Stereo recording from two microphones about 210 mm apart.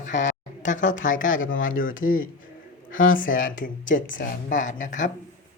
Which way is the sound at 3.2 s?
40° left (ahead or behind).